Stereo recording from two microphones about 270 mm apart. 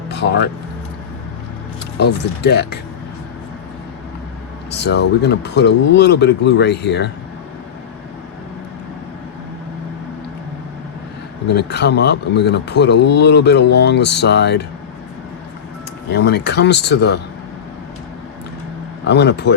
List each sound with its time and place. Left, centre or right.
0.1 s a sound: left
2.0 s speech: left
4.7 s speech: left
11.4 s speech: left
16.0 s speech: left
19.0 s speech: left